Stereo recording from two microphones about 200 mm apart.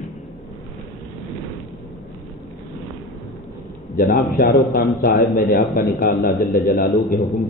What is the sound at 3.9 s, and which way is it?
A man's voice, 45° left (ahead or behind).